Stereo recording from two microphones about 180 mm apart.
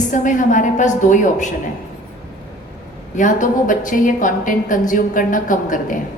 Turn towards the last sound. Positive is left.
turn(degrees=45)  # may be behind; listen again after turning